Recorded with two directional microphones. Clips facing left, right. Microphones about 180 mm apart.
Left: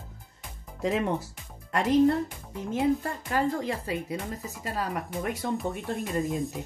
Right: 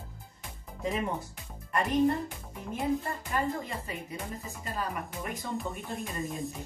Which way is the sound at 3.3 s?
90° left.